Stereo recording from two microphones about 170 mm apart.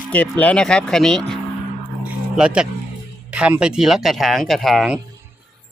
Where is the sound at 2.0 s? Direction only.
5° right (ahead or behind).